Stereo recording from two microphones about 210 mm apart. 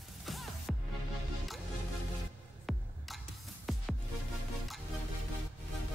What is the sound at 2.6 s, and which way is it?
Music, centre (ahead or behind).